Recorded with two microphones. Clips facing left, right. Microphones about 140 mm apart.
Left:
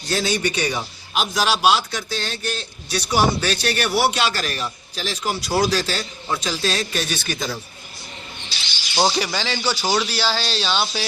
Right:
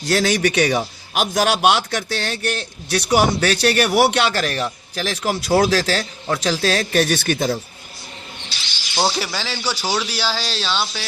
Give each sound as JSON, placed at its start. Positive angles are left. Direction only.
{"t": 0.1, "sound": "a man's voice", "side_deg": -90}
{"t": 9.0, "sound": "speech", "side_deg": 0}